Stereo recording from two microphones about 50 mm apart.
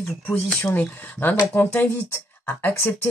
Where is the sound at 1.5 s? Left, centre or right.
Left.